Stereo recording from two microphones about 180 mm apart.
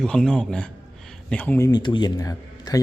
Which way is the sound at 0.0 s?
5° left (ahead or behind).